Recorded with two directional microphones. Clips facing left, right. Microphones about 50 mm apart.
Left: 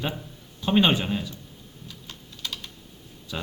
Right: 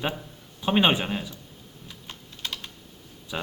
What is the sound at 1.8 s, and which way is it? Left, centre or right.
Typing, right.